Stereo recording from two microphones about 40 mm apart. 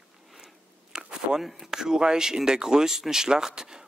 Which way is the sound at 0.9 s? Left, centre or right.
Centre.